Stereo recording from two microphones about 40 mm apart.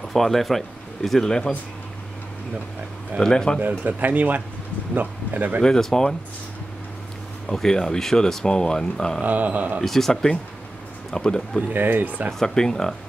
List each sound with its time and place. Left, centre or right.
0.1 s speech: centre
1.2 s speech: centre
3.2 s speech: centre
3.6 s speech: right
5.6 s speech: centre
7.4 s speech: centre
9.2 s speech: right
9.8 s speech: centre
11.2 s speech: left
11.7 s speech: right
12.4 s speech: centre